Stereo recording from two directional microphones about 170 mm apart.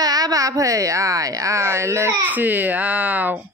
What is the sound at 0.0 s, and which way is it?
Speech, 20° right (ahead or behind).